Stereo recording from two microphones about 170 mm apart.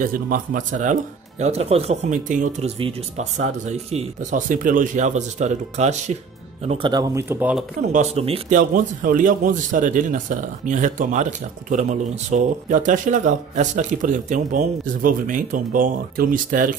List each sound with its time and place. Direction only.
0.0 s a man's voice: 55° right (ahead or behind)
1.4 s a man's voice: 40° right (ahead or behind)
6.7 s speech: 25° right (ahead or behind)
7.2 s speech: 10° right (ahead or behind)
7.8 s a man's voice: 45° right (ahead or behind)
8.5 s a man's voice: 50° right (ahead or behind)